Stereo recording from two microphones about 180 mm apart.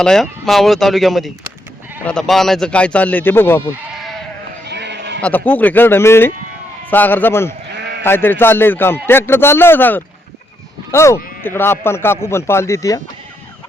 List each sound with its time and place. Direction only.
0.0 s speech: centre (ahead or behind)
3.9 s sheep: centre (ahead or behind)
4.6 s sheep: 70° right (ahead or behind)
5.2 s speech: 10° left (ahead or behind)
7.7 s sheep: 70° right (ahead or behind)
8.0 s speech: 10° left (ahead or behind)